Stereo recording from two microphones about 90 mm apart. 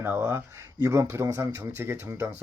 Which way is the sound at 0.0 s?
25° right (ahead or behind).